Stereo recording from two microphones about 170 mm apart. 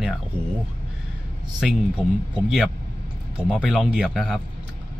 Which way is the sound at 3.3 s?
5° right (ahead or behind).